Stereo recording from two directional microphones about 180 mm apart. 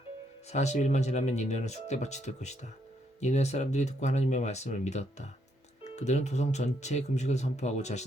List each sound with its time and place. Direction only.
0.5 s speech: 40° left (ahead or behind)